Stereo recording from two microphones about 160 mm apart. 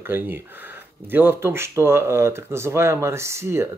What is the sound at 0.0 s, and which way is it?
Speech, 15° right (ahead or behind).